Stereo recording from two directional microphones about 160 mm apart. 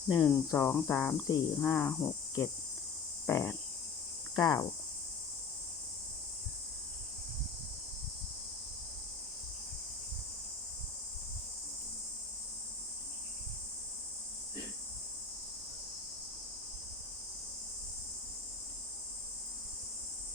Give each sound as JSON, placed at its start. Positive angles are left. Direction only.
{"t": 0.3, "sound": "speech", "side_deg": 15}
{"t": 4.4, "sound": "cricket", "side_deg": 25}